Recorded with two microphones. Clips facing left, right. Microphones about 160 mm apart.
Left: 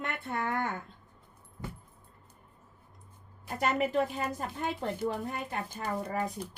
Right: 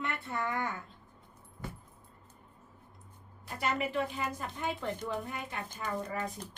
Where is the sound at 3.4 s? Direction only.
45° left (ahead or behind).